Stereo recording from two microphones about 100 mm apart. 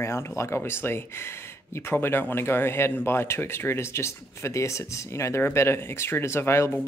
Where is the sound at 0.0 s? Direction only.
25° left (ahead or behind).